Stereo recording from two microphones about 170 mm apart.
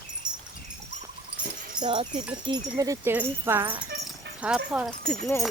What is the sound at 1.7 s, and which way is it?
Speech, 25° right (ahead or behind).